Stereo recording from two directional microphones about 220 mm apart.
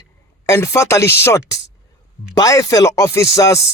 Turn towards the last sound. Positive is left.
turn(degrees=15)  # may be behind; listen again after turning